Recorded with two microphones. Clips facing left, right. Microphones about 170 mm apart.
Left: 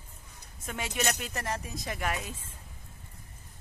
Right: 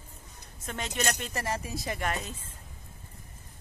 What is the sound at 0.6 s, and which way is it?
Speech, 10° left (ahead or behind).